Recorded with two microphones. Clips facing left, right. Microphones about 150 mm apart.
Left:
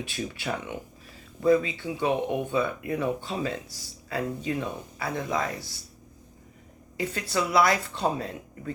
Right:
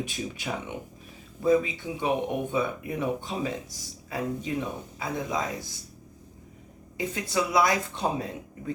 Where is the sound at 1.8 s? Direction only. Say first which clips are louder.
Left 1 dB; 20° right (ahead or behind).